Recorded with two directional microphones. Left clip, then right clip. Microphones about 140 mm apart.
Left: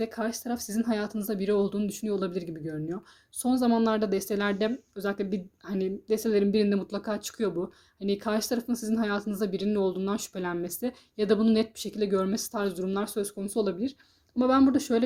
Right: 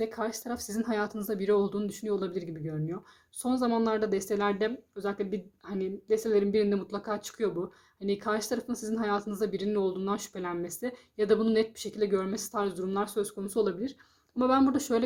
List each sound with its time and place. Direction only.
0.0 s speech: 25° left (ahead or behind)